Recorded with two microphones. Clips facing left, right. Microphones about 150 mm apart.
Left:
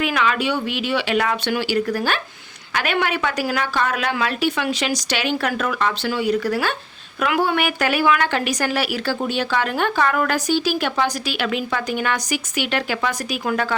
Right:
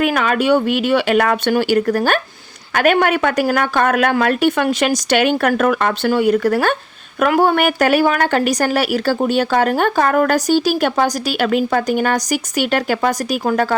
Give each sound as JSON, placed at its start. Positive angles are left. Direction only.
{"t": 0.0, "sound": "a woman's voice", "side_deg": -45}